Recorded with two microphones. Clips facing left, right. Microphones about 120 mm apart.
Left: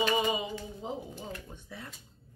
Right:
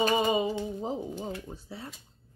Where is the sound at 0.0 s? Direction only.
35° right (ahead or behind).